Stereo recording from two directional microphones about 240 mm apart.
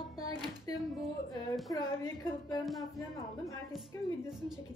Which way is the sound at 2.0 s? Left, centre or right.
Centre.